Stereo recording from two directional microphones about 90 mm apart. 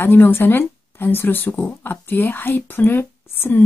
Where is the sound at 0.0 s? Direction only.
25° left (ahead or behind).